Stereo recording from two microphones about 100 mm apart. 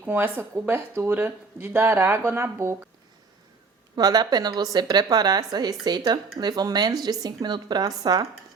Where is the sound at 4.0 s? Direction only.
40° right (ahead or behind).